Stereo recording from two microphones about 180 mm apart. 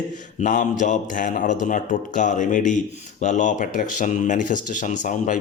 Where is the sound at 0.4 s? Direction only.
45° left (ahead or behind).